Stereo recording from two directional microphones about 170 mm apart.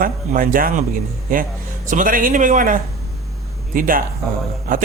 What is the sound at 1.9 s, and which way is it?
Speech, 50° right (ahead or behind).